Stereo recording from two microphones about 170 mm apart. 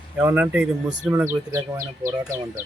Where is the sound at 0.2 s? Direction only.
10° right (ahead or behind).